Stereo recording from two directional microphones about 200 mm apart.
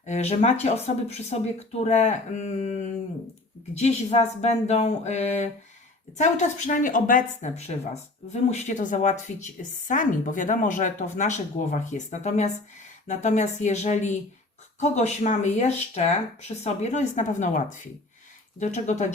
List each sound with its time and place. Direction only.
0.0 s speech: 35° left (ahead or behind)